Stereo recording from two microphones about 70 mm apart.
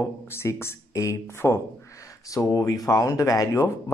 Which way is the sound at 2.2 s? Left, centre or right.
Left.